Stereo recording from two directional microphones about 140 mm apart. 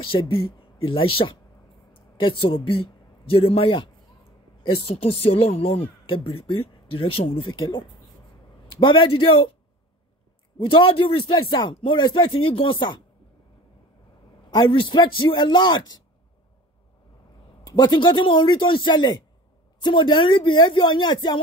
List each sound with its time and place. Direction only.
0.0 s speech: 40° left (ahead or behind)
2.4 s speech: 40° left (ahead or behind)
10.6 s speech: 35° left (ahead or behind)
14.5 s speech: 35° left (ahead or behind)
17.6 s speech: 30° left (ahead or behind)